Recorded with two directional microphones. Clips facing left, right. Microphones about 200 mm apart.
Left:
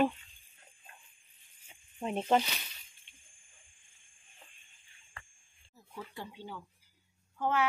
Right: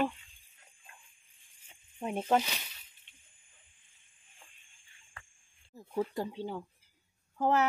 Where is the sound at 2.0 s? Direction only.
Centre (ahead or behind).